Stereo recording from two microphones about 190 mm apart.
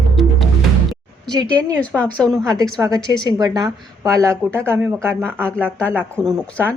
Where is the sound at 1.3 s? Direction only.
20° right (ahead or behind).